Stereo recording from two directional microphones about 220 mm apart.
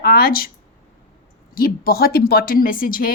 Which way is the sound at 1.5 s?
40° left (ahead or behind).